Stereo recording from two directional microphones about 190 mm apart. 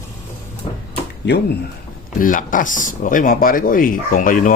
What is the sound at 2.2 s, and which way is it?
Speech, 45° left (ahead or behind).